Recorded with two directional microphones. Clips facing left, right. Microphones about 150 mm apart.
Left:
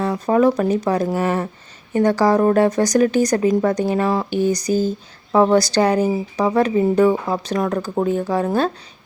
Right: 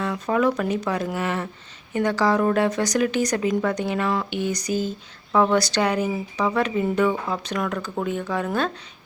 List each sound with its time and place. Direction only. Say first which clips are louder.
0.0 s speech: left 6 dB; 35° left (ahead or behind)